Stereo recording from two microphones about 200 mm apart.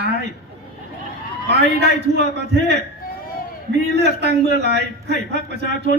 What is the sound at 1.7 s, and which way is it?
Speech, 55° right (ahead or behind).